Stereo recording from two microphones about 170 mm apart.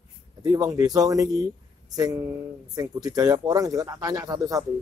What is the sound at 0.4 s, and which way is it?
Speech, 20° right (ahead or behind).